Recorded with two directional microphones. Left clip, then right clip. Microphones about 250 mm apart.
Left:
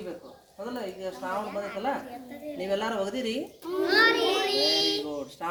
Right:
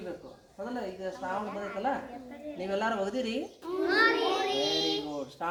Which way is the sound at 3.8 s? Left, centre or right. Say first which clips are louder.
Left 3 dB; left.